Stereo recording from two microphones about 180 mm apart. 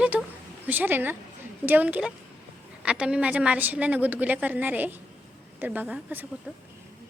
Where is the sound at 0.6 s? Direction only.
10° right (ahead or behind).